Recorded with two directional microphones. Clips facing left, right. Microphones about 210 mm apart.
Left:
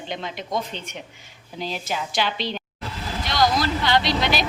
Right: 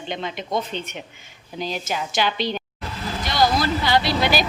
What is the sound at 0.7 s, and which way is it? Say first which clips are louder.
Speech: right 5 dB; 60° right (ahead or behind).